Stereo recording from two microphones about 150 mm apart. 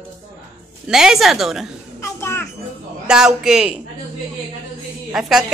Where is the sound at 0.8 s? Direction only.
5° right (ahead or behind).